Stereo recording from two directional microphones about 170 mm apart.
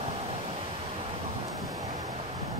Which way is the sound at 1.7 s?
20° right (ahead or behind).